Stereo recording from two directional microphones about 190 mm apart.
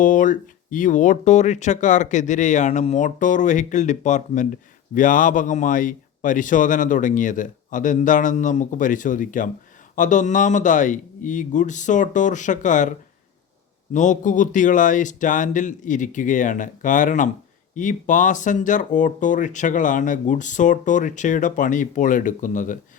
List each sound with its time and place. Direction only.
0.0 s speech: 45° left (ahead or behind)
13.9 s speech: 40° left (ahead or behind)